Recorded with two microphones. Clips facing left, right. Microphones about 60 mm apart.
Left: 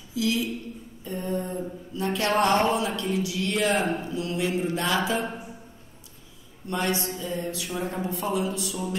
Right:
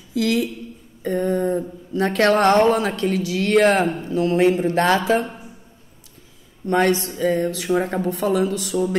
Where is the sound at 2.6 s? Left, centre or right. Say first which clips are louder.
Right 7 dB; right.